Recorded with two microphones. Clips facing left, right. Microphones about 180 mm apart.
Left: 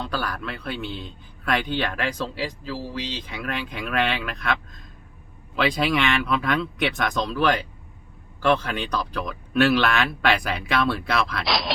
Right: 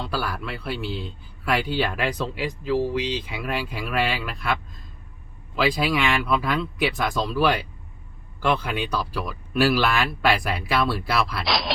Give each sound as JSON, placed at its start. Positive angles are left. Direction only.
{"t": 0.1, "sound": "speech", "side_deg": -10}
{"t": 5.5, "sound": "speech", "side_deg": -5}